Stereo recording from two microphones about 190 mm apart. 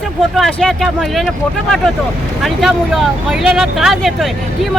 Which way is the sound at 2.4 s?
Centre (ahead or behind).